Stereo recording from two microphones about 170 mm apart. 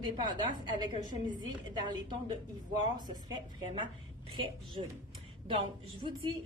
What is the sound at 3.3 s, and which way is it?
Speech, 25° right (ahead or behind).